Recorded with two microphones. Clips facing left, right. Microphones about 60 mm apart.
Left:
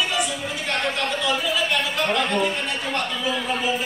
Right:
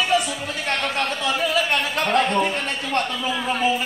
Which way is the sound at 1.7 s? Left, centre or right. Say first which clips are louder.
Right 2 dB; right.